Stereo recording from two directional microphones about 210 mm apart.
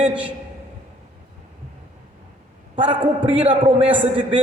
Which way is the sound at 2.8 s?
25° right (ahead or behind).